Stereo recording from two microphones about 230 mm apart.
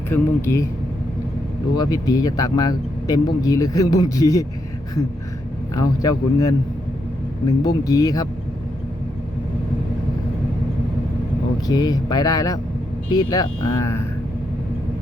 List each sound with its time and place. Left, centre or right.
0.1 s a man's voice: centre
1.7 s a man's voice: centre
5.7 s a man's voice: centre
11.7 s a man's voice: centre